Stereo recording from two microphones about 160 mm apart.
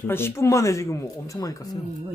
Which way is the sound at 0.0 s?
15° left (ahead or behind).